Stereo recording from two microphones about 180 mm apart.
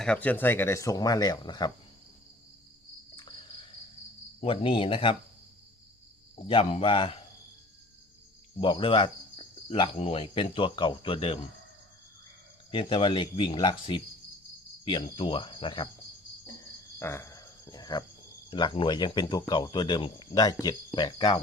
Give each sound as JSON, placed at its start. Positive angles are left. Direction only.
{"t": 0.0, "sound": "speech", "side_deg": 5}
{"t": 4.4, "sound": "speech", "side_deg": 30}
{"t": 6.5, "sound": "speech", "side_deg": 30}
{"t": 8.6, "sound": "speech", "side_deg": 30}
{"t": 12.7, "sound": "speech", "side_deg": 30}
{"t": 17.0, "sound": "cricket", "side_deg": 15}
{"t": 18.5, "sound": "speech", "side_deg": 30}